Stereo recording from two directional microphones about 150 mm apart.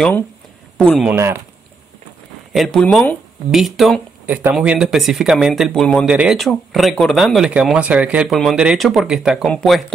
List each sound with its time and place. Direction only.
0.7 s a man's voice: 5° left (ahead or behind)
1.1 s speech: 15° right (ahead or behind)
2.5 s speech: centre (ahead or behind)
6.0 s speech: 5° right (ahead or behind)